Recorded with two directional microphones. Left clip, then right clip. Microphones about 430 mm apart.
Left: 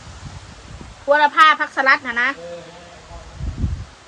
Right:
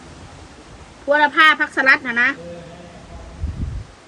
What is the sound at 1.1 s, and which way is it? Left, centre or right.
Speech, centre.